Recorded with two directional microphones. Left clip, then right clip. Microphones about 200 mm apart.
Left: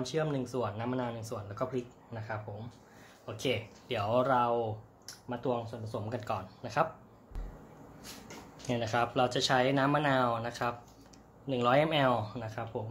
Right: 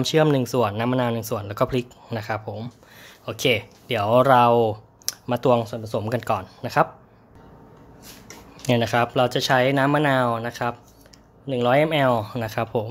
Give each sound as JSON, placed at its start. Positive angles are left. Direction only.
{"t": 0.0, "sound": "speech", "side_deg": -45}
{"t": 8.6, "sound": "speech", "side_deg": -40}